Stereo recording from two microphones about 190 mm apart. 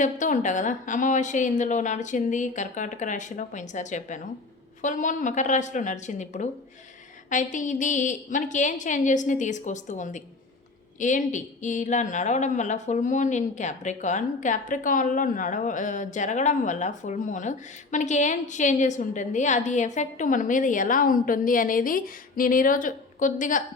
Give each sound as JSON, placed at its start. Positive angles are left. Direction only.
{"t": 0.0, "sound": "a woman's voice", "side_deg": 40}